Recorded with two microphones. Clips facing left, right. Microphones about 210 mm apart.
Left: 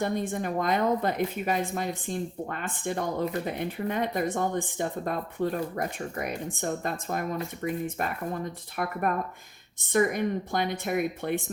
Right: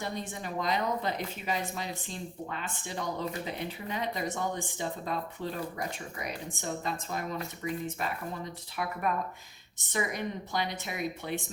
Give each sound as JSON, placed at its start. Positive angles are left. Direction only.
{"t": 0.0, "sound": "speech", "side_deg": 55}